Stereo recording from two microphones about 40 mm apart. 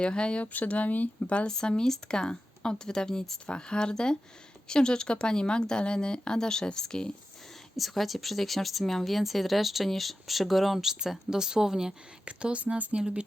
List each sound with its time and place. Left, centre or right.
0.0 s speech: left
1.5 s speech: centre
7.8 s speech: centre
12.2 s speech: right